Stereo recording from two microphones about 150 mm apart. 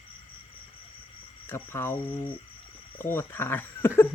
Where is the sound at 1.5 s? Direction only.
15° left (ahead or behind).